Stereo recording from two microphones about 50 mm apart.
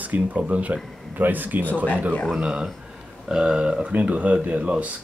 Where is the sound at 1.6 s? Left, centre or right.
Left.